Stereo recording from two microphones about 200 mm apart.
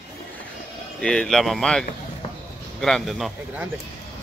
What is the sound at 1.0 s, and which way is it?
A man's voice, 5° left (ahead or behind).